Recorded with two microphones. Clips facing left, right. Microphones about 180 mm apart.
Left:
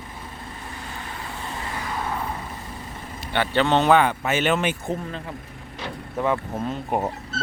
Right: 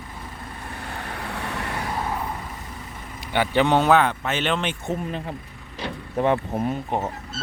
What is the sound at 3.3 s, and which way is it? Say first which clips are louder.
Speech: right 1 dB; 15° right (ahead or behind).